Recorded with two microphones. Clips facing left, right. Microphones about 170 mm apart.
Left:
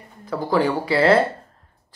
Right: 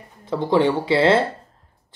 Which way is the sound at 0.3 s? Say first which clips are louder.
Right 2 dB; 25° right (ahead or behind).